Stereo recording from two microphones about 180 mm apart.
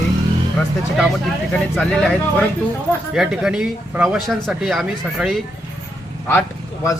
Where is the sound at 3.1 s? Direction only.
5° right (ahead or behind).